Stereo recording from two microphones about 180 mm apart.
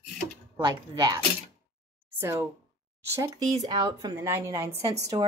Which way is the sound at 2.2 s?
15° right (ahead or behind).